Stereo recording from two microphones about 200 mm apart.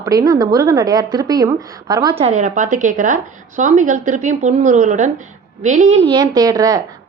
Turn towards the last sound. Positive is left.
turn(degrees=-20)  # may be behind; listen again after turning